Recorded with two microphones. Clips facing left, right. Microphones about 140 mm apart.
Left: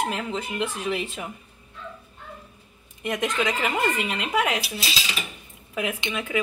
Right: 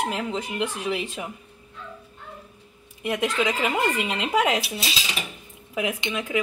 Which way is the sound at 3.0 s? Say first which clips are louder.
Right 1 dB; 10° right (ahead or behind).